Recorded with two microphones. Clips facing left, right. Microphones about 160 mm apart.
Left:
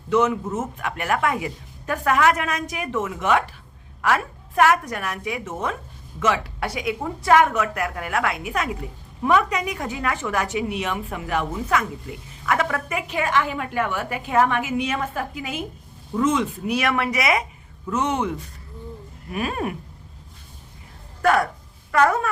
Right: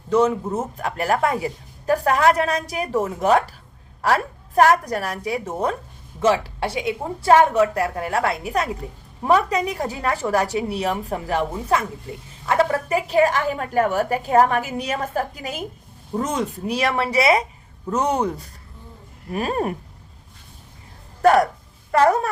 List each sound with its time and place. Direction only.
0.1 s a woman's voice: 30° right (ahead or behind)
21.2 s a woman's voice: 35° right (ahead or behind)